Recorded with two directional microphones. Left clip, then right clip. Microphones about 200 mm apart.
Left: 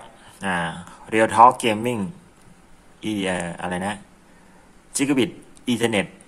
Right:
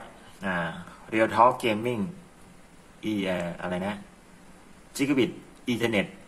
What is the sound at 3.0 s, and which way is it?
Speech, 25° left (ahead or behind).